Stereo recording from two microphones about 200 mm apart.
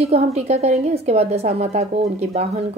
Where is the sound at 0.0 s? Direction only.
30° right (ahead or behind).